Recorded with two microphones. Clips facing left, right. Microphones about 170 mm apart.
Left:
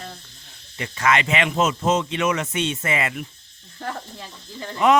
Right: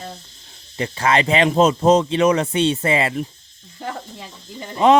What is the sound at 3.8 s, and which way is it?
Speech, 10° right (ahead or behind).